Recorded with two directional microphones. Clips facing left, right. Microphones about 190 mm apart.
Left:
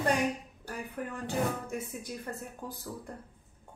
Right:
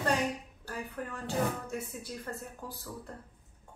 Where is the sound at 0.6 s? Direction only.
15° left (ahead or behind).